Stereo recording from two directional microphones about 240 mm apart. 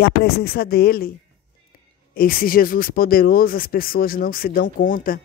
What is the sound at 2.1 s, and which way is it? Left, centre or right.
A man's voice, left.